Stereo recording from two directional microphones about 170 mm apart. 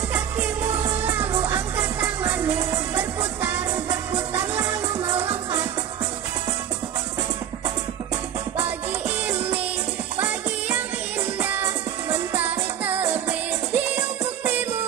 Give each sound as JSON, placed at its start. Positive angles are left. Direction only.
{"t": 0.1, "sound": "music", "side_deg": -10}
{"t": 5.1, "sound": "music", "side_deg": -35}
{"t": 8.6, "sound": "music", "side_deg": -10}